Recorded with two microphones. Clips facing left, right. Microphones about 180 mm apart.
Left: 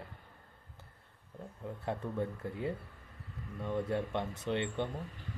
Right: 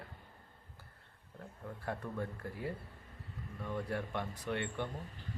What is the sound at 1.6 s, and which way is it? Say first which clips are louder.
Speech: left 3 dB; 20° left (ahead or behind).